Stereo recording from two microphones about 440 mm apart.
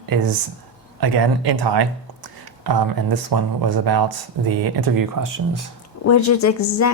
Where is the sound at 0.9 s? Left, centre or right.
Right.